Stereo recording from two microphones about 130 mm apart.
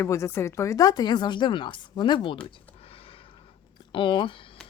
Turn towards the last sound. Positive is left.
turn(degrees=40)  # may be behind; listen again after turning